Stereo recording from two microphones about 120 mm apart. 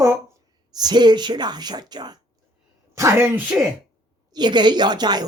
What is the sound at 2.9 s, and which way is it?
Speech, 20° right (ahead or behind).